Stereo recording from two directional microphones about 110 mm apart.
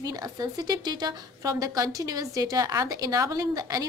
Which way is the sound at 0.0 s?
35° right (ahead or behind).